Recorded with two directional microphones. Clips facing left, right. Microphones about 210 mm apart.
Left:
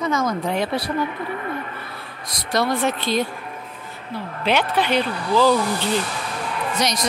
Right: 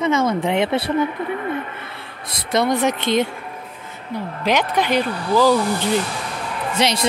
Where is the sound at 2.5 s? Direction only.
20° right (ahead or behind).